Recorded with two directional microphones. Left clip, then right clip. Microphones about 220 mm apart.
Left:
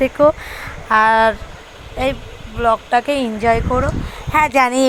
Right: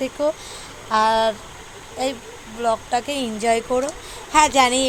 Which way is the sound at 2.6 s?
15° left (ahead or behind).